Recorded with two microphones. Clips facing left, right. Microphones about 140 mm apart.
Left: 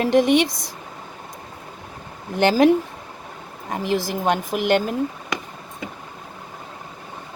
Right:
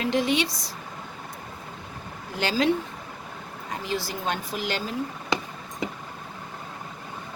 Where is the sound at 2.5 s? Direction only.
45° left (ahead or behind).